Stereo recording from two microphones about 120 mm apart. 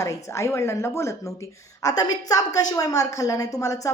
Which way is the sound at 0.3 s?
20° left (ahead or behind).